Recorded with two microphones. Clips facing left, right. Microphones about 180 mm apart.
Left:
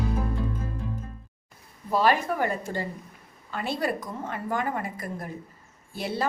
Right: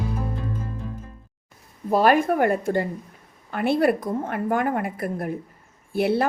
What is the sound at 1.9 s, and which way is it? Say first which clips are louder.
Speech: right 5 dB; 50° right (ahead or behind).